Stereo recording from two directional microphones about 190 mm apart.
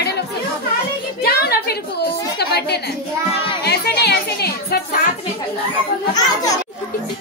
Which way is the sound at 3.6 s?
60° left (ahead or behind).